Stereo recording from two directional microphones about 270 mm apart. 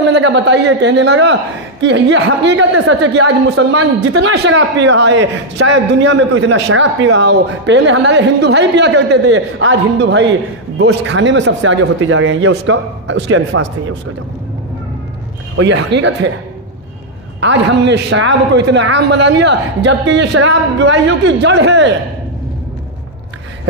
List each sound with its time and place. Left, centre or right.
0.1 s a man's voice: right
15.5 s a man's voice: right
17.4 s a man's voice: right